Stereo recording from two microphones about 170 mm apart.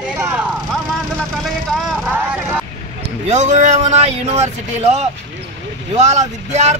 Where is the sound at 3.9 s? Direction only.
40° right (ahead or behind).